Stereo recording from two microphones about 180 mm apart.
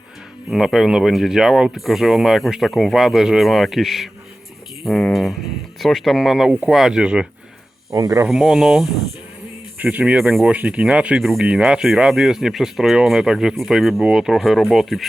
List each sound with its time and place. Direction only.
0.5 s speech: centre (ahead or behind)
7.9 s speech: 15° right (ahead or behind)
8.3 s speech: 5° right (ahead or behind)